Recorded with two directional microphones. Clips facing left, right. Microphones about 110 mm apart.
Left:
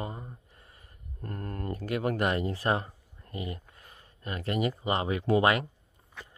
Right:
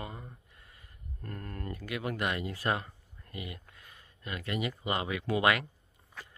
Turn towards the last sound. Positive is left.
turn(degrees=30)  # may be behind; listen again after turning